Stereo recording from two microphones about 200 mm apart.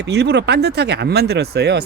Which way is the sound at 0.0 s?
55° right (ahead or behind).